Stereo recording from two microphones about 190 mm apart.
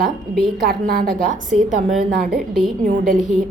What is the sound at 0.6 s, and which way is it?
Speech, 50° right (ahead or behind).